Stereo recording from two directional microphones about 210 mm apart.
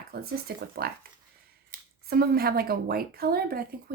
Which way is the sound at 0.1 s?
45° right (ahead or behind).